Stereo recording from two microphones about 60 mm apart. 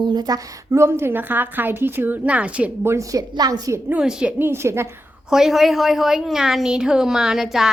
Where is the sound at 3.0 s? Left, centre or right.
Right.